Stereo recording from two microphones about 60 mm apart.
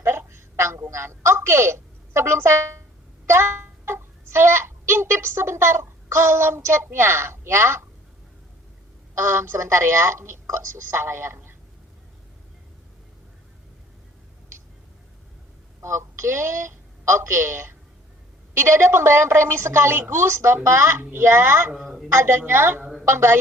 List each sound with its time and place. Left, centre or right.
0.0 s a sound: right
3.2 s a child's voice: right
9.1 s a woman's voice: right
15.8 s a woman's voice: right
21.8 s a woman's voice: centre
22.1 s a woman's voice: right